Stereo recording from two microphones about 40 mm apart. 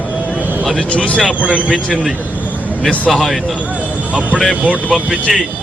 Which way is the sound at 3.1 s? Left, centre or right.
Centre.